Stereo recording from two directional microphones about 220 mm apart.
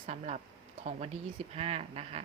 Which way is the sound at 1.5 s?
30° right (ahead or behind).